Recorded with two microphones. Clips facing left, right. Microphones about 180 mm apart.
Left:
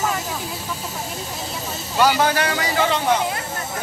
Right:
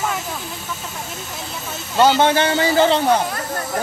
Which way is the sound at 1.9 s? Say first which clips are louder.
Right 3 dB; 25° right (ahead or behind).